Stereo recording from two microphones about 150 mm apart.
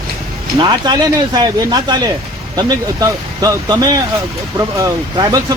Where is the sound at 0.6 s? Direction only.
30° right (ahead or behind).